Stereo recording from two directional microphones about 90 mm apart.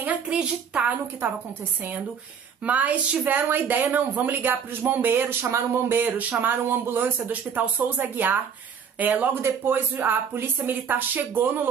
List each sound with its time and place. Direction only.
0.0 s a woman's voice: 15° right (ahead or behind)
2.6 s a woman's voice: 15° right (ahead or behind)